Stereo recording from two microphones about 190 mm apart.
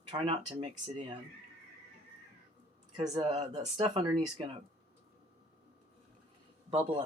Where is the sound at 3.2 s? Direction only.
35° right (ahead or behind).